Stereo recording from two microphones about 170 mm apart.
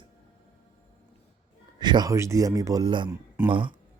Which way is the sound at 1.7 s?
25° right (ahead or behind).